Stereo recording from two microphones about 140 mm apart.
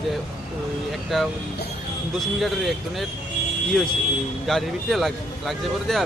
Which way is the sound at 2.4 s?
Centre (ahead or behind).